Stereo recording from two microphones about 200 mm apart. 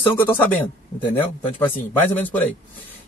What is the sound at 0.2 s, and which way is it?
Speech, 10° left (ahead or behind).